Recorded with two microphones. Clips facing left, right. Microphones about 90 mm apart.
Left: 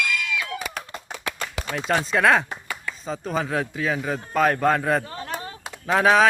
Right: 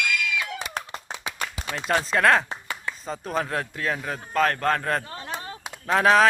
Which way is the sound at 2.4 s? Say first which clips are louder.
Even; 25° right (ahead or behind).